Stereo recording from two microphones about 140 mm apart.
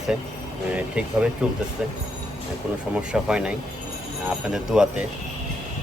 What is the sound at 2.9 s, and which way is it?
Speech, 5° right (ahead or behind).